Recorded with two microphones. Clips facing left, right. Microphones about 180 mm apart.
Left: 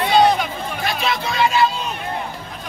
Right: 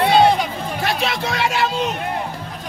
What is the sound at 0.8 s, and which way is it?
Speech, 75° right (ahead or behind).